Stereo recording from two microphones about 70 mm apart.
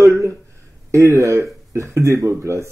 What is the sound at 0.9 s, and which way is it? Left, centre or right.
Speech, right.